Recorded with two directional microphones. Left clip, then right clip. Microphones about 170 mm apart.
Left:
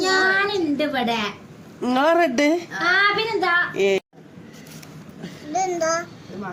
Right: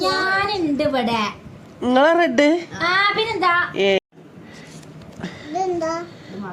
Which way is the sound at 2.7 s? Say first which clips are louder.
Even; 40° right (ahead or behind).